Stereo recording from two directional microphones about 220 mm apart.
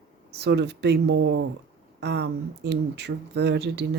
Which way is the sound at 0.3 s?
50° right (ahead or behind).